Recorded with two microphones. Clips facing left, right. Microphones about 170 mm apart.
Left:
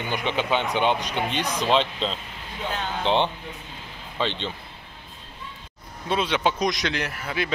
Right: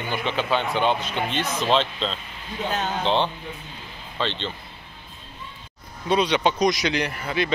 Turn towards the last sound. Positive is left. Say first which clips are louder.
# right 3 dB
turn(degrees=5)  # may be behind; listen again after turning